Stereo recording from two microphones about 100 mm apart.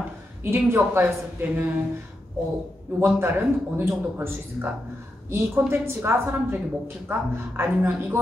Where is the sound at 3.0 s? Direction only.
25° right (ahead or behind).